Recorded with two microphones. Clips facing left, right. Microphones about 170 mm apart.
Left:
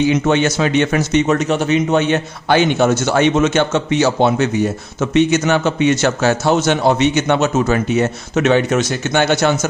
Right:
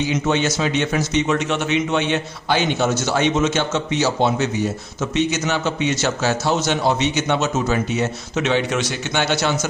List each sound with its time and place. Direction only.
0.1 s a man's voice: 60° left (ahead or behind)
1.4 s a man's voice: 40° left (ahead or behind)